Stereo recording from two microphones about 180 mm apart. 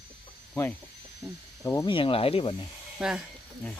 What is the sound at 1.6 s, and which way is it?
Speech, 20° left (ahead or behind).